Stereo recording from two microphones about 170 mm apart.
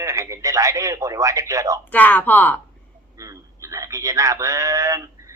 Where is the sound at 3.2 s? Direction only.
20° right (ahead or behind).